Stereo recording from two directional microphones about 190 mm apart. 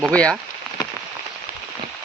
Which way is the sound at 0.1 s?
5° left (ahead or behind).